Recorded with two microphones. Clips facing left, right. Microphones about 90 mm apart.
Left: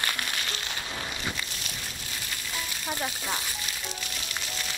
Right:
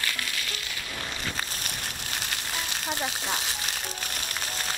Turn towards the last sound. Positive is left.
turn(degrees=-45)  # may be behind; listen again after turning